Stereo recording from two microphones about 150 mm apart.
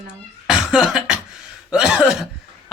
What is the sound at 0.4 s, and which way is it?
Cough, 5° right (ahead or behind).